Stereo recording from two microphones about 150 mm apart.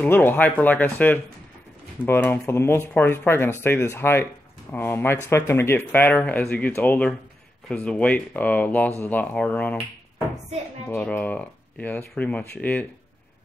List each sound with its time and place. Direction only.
0.0 s speech: 15° left (ahead or behind)
10.9 s speech: 10° left (ahead or behind)